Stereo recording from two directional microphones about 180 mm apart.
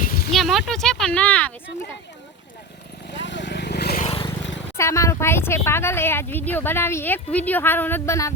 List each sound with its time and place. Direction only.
0.0 s a sound: 55° left (ahead or behind)
0.3 s speech: centre (ahead or behind)
3.1 s vehicle: 80° left
3.9 s vehicle: 35° left (ahead or behind)
4.8 s speech: 15° left (ahead or behind)